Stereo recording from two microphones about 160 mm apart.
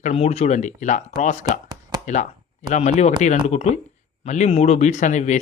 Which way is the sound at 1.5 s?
25° right (ahead or behind).